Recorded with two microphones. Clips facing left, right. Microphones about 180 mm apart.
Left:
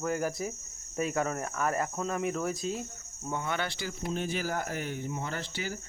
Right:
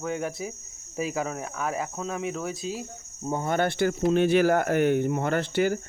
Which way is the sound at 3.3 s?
40° right (ahead or behind).